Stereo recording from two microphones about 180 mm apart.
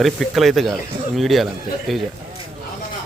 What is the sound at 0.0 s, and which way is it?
Speech, centre (ahead or behind).